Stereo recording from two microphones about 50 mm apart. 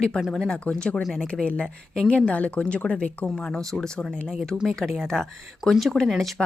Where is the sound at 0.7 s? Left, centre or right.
Left.